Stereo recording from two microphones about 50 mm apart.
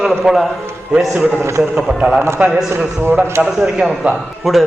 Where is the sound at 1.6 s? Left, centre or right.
Centre.